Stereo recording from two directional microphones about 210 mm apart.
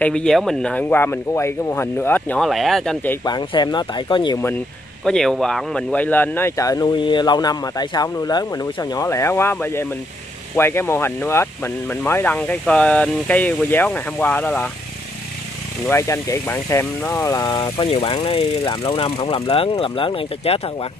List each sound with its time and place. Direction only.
0.0 s speech: 5° left (ahead or behind)
3.3 s speech: 20° left (ahead or behind)
5.0 s speech: centre (ahead or behind)
15.9 s speech: 15° left (ahead or behind)